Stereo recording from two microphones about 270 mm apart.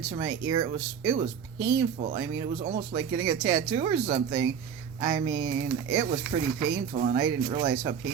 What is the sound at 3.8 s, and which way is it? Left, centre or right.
Speech, right.